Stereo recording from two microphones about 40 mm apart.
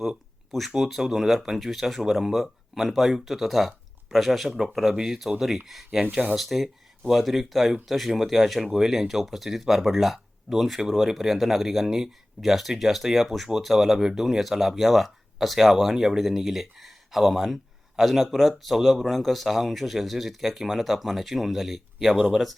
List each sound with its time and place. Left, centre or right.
0.8 s speech: centre
15.9 s speech: centre
16.1 s speech: centre